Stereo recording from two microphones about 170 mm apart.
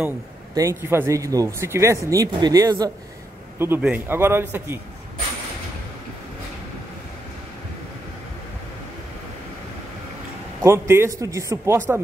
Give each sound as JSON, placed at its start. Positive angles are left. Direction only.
{"t": 0.6, "sound": "a man's voice", "side_deg": -15}
{"t": 10.6, "sound": "a man's voice", "side_deg": -15}